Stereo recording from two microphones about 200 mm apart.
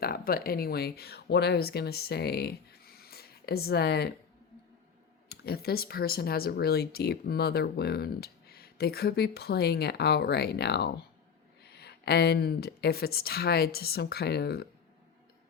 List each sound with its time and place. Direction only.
0.0 s speech: 50° left (ahead or behind)
5.3 s speech: 50° left (ahead or behind)